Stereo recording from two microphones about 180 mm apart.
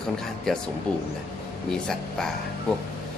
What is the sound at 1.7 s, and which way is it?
Speech, 5° left (ahead or behind).